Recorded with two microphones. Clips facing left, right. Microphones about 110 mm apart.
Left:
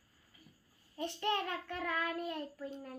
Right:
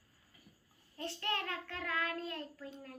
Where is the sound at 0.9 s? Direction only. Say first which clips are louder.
Left 4 dB; 15° left (ahead or behind).